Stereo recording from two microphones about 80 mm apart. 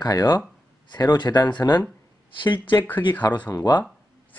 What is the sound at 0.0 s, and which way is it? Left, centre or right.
Speech, left.